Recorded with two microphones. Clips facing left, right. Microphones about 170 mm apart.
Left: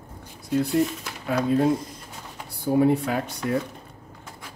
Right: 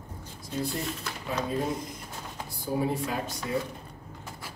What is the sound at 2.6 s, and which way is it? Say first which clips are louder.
Speech: left 9 dB; 65° left (ahead or behind).